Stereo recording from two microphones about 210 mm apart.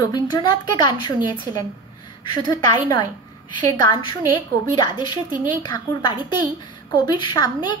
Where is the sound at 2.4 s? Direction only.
20° left (ahead or behind).